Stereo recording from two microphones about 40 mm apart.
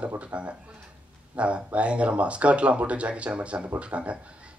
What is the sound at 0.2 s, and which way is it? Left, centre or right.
Speech, right.